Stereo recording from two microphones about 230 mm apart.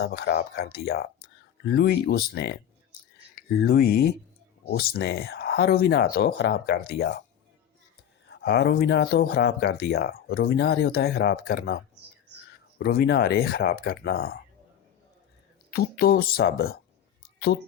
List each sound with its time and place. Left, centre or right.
0.0 s speech: left
8.3 s speech: left
12.8 s speech: left
15.7 s speech: left